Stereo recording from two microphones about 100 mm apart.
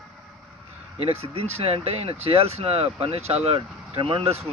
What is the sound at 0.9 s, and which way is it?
Speech, 80° right.